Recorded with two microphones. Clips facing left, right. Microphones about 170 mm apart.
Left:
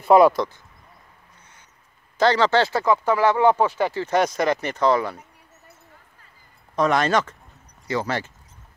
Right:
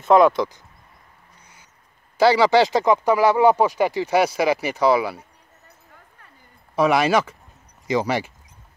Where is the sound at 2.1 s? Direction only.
10° right (ahead or behind).